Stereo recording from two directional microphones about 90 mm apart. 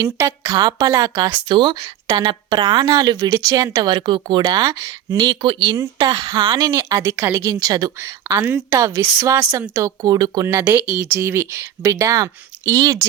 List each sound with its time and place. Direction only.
0.0 s a woman's voice: 35° right (ahead or behind)
0.5 s speech: 45° right (ahead or behind)
3.9 s speech: 60° right (ahead or behind)
5.7 s speech: 40° right (ahead or behind); by 6.6 s 55° right (ahead or behind)
6.6 s speech: 40° right (ahead or behind)
8.4 s speech: 25° right (ahead or behind)
8.7 s speech: 35° right (ahead or behind)
10.6 s speech: 15° right (ahead or behind)
11.0 s speech: 30° right (ahead or behind)